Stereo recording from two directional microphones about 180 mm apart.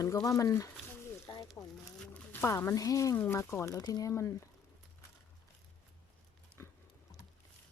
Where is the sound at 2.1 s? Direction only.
10° left (ahead or behind).